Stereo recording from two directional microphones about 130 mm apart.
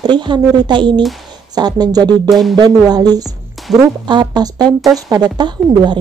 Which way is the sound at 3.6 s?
Centre (ahead or behind).